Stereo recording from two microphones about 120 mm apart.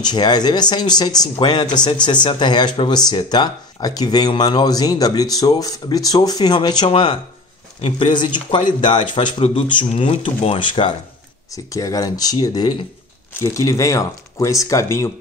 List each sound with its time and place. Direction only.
0.0 s speech: 35° left (ahead or behind)
11.5 s speech: 30° left (ahead or behind)